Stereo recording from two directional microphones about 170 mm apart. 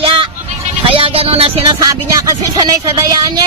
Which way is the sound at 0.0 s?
35° right (ahead or behind).